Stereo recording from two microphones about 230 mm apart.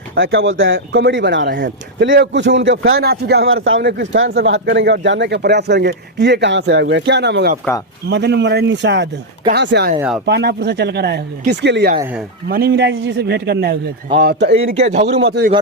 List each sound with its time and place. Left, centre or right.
0.2 s speech: right
3.0 s speech: right
3.5 s speech: right
14.8 s speech: right
15.2 s speech: right